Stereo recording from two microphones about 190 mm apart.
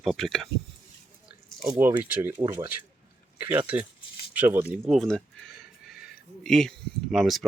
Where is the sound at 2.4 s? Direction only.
20° right (ahead or behind).